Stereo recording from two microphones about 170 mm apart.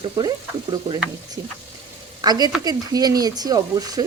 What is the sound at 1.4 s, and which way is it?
Speech, 15° right (ahead or behind).